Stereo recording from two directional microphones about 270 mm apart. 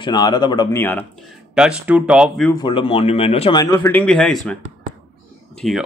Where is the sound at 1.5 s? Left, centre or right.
Centre.